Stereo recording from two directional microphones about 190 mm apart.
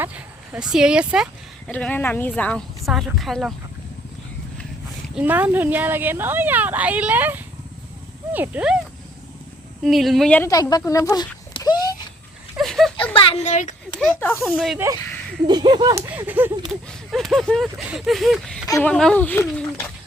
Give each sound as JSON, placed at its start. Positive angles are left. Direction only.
{"t": 0.0, "sound": "speech", "side_deg": -10}
{"t": 5.0, "sound": "speech", "side_deg": -5}
{"t": 9.8, "sound": "speech", "side_deg": 0}
{"t": 10.5, "sound": "speech", "side_deg": 20}
{"t": 12.5, "sound": "a sound", "side_deg": 0}
{"t": 13.1, "sound": "speech", "side_deg": 30}
{"t": 14.2, "sound": "speech", "side_deg": 10}
{"t": 14.4, "sound": "speech", "side_deg": 0}
{"t": 15.4, "sound": "speech", "side_deg": -25}
{"t": 16.0, "sound": "speech", "side_deg": -10}